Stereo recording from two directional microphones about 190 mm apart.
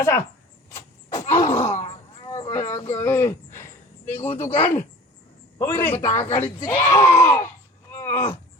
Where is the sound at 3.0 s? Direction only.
10° left (ahead or behind).